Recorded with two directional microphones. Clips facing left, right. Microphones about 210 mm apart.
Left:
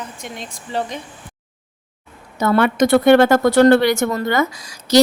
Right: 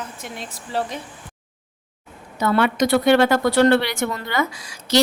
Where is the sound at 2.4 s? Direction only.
45° left (ahead or behind).